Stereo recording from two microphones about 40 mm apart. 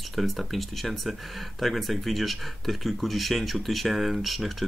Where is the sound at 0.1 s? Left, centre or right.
Centre.